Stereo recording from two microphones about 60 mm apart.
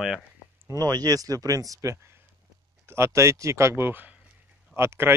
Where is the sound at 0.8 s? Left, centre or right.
Right.